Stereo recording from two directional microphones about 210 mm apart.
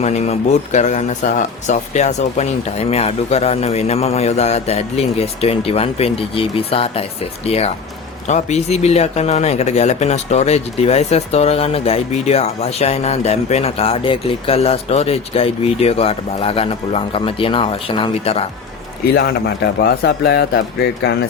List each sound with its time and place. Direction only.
0.0 s speech: 30° left (ahead or behind)
19.8 s speech: 50° left (ahead or behind)